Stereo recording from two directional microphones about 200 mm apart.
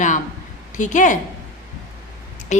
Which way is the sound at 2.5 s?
35° left (ahead or behind).